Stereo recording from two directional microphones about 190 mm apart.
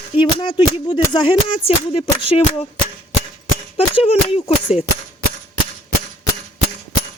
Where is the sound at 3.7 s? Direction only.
30° left (ahead or behind).